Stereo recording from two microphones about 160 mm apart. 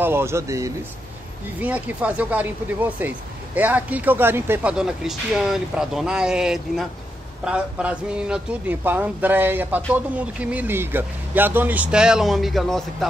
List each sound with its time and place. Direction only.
0.0 s speech: 15° right (ahead or behind)
1.6 s speech: 10° right (ahead or behind)